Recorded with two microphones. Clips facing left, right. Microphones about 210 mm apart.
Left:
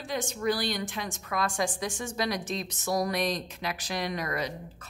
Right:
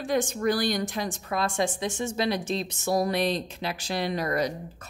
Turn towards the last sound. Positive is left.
turn(degrees=-40)  # may be behind; listen again after turning